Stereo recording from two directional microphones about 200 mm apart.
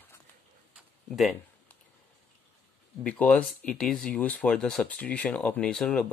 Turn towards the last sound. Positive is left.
turn(degrees=5)  # may be behind; listen again after turning